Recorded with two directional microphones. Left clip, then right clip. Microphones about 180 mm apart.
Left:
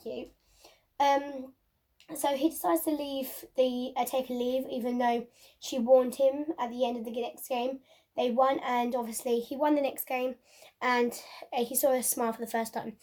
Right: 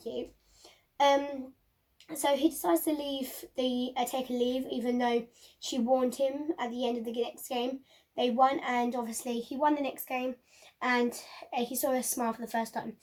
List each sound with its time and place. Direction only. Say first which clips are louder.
2.2 s speech: right 1 dB; 45° left (ahead or behind)